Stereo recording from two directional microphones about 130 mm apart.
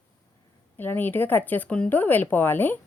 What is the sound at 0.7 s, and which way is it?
A woman's voice, 15° left (ahead or behind).